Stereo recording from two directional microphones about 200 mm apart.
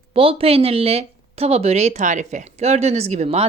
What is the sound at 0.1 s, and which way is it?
A woman's voice, 30° right (ahead or behind).